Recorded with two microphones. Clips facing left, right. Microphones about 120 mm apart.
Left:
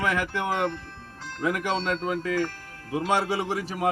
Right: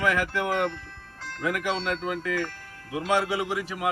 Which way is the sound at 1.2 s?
15° left (ahead or behind).